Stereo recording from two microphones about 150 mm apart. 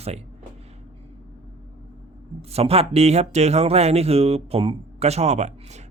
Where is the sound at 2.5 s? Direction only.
40° right (ahead or behind).